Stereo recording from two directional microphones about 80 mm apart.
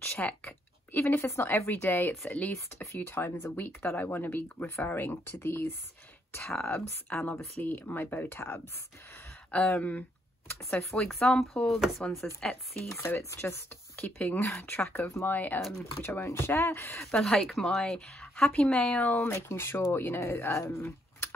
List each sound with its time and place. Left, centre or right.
0.2 s speech: centre
2.5 s speech: left
9.5 s speech: centre
11.1 s speech: centre
12.0 s a woman's voice: centre
12.9 s speech: left
15.0 s speech: left
15.3 s speech: left
17.1 s a woman's voice: centre
19.2 s speech: left
20.7 s a sound: left